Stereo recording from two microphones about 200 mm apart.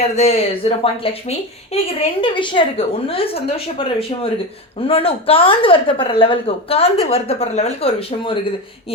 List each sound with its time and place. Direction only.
0.2 s speech: 30° left (ahead or behind)